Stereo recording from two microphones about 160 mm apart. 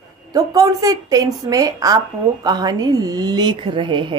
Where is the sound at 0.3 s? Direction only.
25° right (ahead or behind).